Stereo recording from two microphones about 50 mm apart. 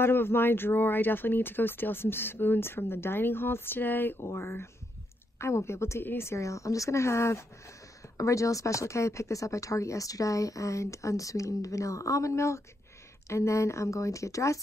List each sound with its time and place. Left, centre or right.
0.0 s speech: left
4.2 s speech: left
5.4 s a woman's voice: left
6.0 s speech: left
6.3 s speech: left
8.2 s speech: left